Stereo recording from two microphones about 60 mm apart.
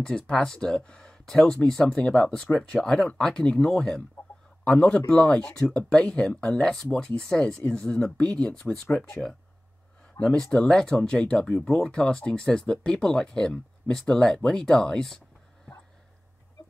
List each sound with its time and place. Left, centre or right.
0.0 s speech: centre
10.2 s speech: left
10.5 s speech: centre